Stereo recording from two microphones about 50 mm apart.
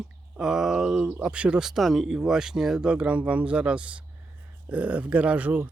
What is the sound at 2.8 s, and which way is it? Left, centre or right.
Speech, right.